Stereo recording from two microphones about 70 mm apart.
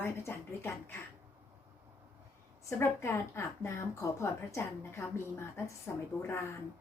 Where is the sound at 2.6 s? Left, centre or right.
Left.